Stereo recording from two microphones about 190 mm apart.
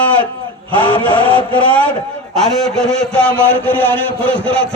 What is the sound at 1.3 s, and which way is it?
Speech, 25° left (ahead or behind).